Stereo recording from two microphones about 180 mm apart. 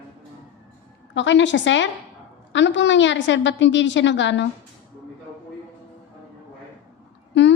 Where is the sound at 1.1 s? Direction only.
90° left.